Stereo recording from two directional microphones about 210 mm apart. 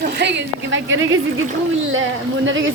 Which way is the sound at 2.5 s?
65° right (ahead or behind).